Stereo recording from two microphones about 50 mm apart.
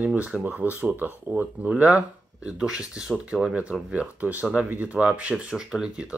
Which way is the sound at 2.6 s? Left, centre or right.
Centre.